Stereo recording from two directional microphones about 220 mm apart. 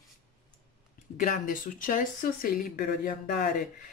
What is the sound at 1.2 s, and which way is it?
Speech, 35° left (ahead or behind).